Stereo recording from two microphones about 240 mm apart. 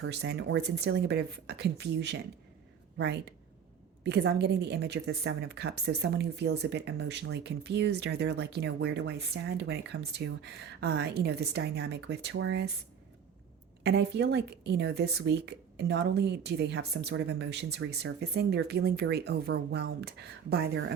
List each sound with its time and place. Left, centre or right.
0.0 s a woman's voice: right
4.0 s a woman's voice: right
13.8 s a woman's voice: right